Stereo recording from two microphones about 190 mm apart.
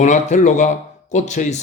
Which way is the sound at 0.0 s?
40° left (ahead or behind).